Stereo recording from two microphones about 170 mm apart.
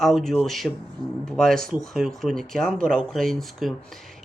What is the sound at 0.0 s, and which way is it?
Speech, centre (ahead or behind).